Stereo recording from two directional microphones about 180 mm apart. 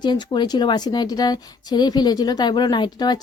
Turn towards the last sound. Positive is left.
turn(degrees=25)  # may be behind; listen again after turning